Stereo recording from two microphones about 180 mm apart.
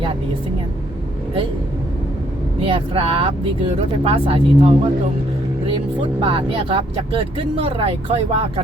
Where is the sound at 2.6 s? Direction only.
30° right (ahead or behind).